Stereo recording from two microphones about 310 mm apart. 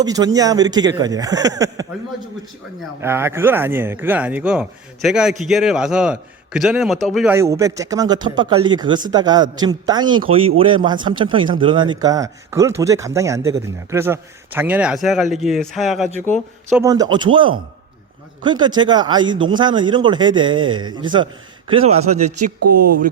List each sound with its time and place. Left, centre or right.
0.0 s speech: centre
3.0 s a man's voice: centre
16.7 s speech: centre
18.4 s speech: centre
22.6 s speech: right